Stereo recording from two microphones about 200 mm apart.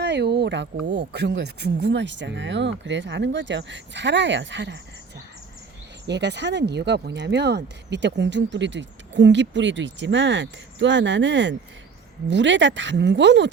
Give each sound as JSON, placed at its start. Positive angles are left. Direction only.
{"t": 0.0, "sound": "a sound", "side_deg": -60}
{"t": 0.9, "sound": "speech", "side_deg": -60}
{"t": 6.1, "sound": "speech", "side_deg": -60}